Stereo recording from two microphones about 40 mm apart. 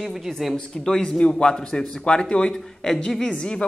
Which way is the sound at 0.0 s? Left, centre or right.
Centre.